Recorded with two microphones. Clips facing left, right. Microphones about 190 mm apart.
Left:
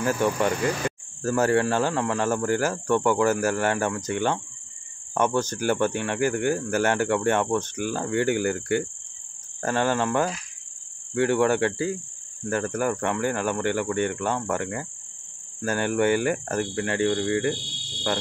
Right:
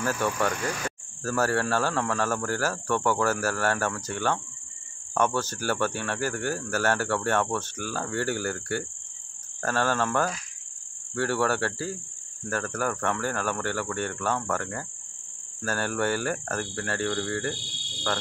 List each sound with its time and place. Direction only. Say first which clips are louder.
0.0 s speech: left 4 dB; 15° left (ahead or behind)